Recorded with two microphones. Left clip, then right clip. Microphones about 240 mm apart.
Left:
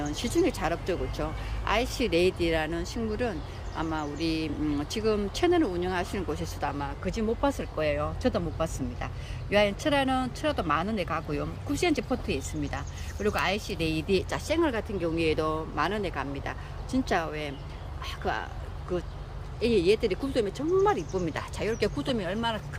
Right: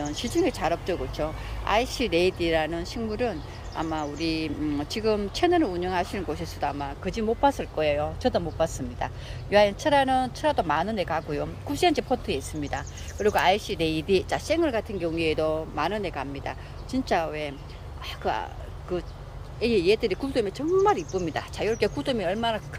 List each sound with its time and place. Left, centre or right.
0.0 s speech: centre